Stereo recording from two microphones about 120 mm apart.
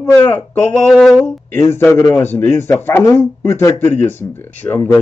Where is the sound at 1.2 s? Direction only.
20° left (ahead or behind).